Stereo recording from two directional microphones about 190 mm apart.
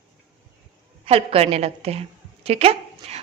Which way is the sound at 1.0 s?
30° right (ahead or behind).